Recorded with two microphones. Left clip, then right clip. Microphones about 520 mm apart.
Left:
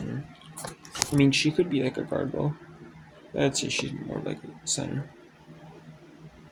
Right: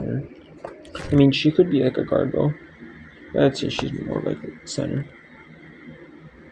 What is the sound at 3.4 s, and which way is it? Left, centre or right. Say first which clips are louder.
Speech: right 6 dB; left.